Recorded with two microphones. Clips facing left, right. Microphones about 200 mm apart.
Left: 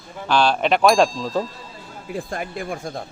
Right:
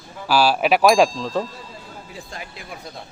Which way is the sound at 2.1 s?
50° left (ahead or behind).